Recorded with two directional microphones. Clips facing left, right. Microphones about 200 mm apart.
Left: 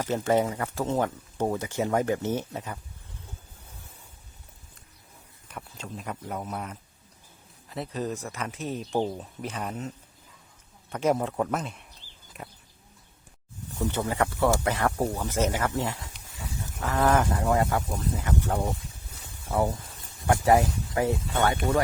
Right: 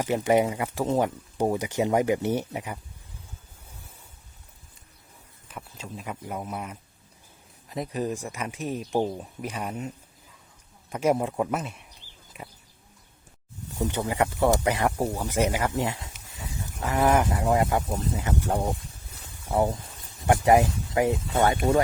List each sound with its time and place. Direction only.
0.0 s speech: 15° right (ahead or behind)
5.5 s speech: centre (ahead or behind)
10.8 s a sound: 10° right (ahead or behind)
13.7 s speech: 15° right (ahead or behind)